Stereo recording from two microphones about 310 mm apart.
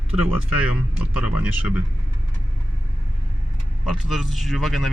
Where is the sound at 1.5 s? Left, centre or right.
Centre.